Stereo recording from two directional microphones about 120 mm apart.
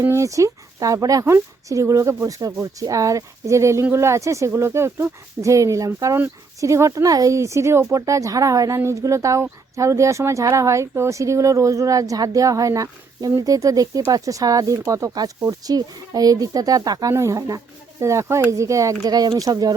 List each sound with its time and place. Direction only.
0.0 s speech: 25° right (ahead or behind)